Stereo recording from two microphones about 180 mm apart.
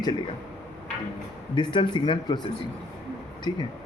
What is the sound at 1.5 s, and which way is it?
Speech, 25° left (ahead or behind).